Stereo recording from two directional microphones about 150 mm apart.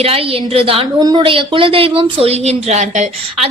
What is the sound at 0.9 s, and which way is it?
Speech, 25° right (ahead or behind).